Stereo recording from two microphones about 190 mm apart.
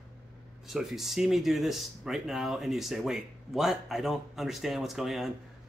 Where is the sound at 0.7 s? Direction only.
Centre (ahead or behind).